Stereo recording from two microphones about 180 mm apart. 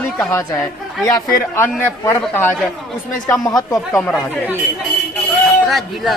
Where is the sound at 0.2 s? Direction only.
20° left (ahead or behind).